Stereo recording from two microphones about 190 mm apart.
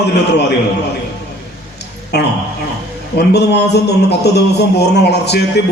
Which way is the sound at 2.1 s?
60° left (ahead or behind).